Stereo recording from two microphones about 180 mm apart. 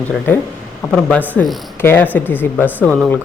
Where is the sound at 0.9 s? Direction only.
5° left (ahead or behind).